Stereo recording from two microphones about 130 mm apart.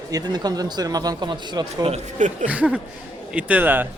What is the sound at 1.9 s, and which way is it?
Speech, 70° right (ahead or behind).